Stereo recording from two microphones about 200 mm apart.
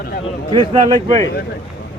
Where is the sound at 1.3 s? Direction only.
55° left (ahead or behind).